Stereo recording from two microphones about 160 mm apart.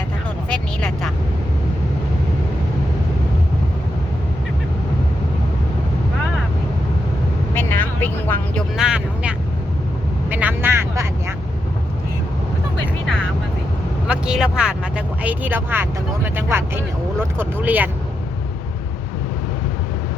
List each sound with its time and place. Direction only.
0.5 s a sound: 5° left (ahead or behind)
7.5 s music: 15° left (ahead or behind)
8.7 s vehicle: 5° right (ahead or behind)
14.1 s vehicle: 5° right (ahead or behind)